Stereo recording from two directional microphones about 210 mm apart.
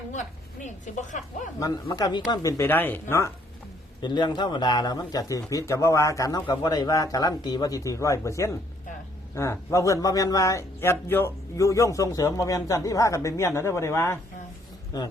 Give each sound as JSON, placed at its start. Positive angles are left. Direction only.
{"t": 0.1, "sound": "a woman's voice", "side_deg": 35}
{"t": 1.5, "sound": "a man's voice", "side_deg": 20}